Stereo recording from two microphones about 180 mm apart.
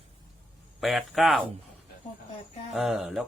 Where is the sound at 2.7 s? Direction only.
Centre (ahead or behind).